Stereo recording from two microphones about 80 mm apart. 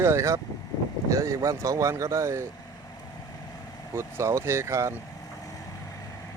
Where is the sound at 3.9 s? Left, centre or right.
Right.